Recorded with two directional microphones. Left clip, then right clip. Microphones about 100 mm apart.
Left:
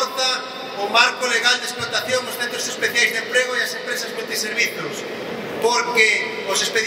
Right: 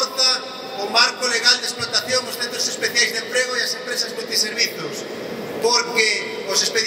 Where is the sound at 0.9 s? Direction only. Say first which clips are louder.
Left 1 dB; 20° right (ahead or behind).